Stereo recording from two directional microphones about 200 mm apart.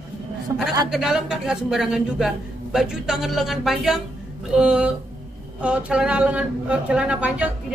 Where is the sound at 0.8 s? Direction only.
Centre (ahead or behind).